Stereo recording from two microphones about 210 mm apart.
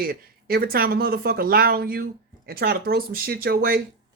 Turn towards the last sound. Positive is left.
turn(degrees=-45)  # may be behind; listen again after turning